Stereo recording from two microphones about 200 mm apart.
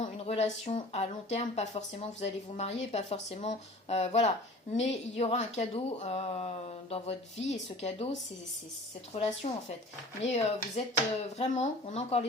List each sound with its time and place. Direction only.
0.0 s speech: 35° left (ahead or behind)
9.1 s speech: 30° left (ahead or behind)